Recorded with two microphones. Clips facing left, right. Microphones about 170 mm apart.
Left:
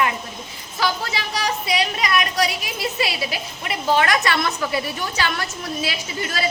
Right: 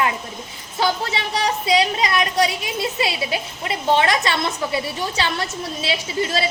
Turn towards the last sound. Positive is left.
turn(degrees=-25)  # may be behind; listen again after turning